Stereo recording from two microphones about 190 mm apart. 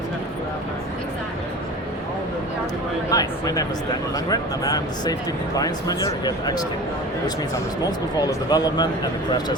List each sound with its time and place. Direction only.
3.1 s speech: 20° left (ahead or behind)
7.9 s speech: 20° left (ahead or behind)